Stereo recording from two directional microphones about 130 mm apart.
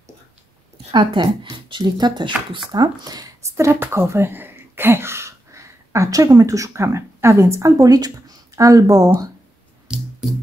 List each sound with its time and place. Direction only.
0.9 s speech: 35° right (ahead or behind)
9.9 s music: 5° right (ahead or behind)